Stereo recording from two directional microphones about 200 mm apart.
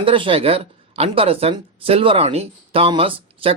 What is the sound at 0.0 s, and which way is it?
A woman's voice, 25° right (ahead or behind).